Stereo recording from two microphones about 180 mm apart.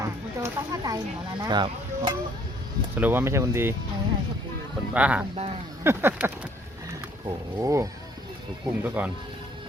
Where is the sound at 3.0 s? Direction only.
10° right (ahead or behind).